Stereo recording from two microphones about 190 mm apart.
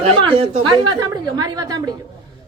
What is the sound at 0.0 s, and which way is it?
A woman's voice, 30° right (ahead or behind).